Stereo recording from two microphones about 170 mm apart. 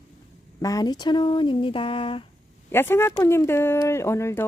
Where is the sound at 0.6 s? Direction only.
20° left (ahead or behind).